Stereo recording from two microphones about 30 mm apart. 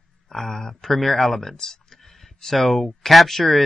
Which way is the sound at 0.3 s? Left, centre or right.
Centre.